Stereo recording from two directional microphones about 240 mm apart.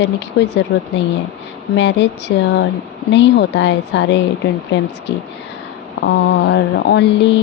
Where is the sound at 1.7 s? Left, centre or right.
Left.